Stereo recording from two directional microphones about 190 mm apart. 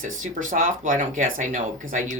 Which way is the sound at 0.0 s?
40° right (ahead or behind).